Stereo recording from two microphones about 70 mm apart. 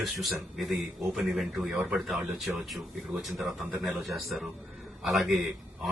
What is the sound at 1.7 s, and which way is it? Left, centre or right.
Speech, centre.